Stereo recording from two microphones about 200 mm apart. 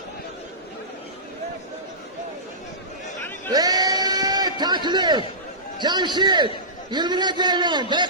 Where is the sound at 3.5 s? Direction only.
20° right (ahead or behind).